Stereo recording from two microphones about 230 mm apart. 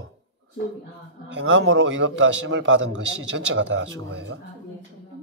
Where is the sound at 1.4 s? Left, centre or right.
Right.